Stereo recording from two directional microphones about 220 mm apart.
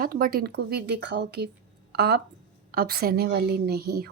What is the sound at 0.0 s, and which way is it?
Speech, 45° right (ahead or behind).